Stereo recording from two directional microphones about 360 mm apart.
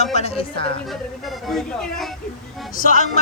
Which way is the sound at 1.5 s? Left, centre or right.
Centre.